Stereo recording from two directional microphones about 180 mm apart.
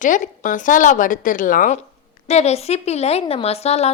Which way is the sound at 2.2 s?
35° left (ahead or behind).